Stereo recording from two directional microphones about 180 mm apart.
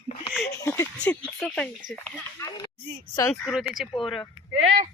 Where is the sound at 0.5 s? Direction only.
15° left (ahead or behind).